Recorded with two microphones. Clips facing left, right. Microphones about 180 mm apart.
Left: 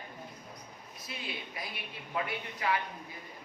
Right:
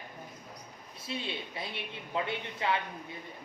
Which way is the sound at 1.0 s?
25° right (ahead or behind).